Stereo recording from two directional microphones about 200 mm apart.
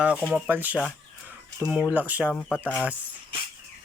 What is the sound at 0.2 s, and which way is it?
Speech, 5° right (ahead or behind).